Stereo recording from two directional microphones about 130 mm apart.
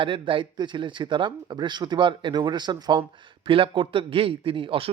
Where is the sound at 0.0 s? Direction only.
40° right (ahead or behind).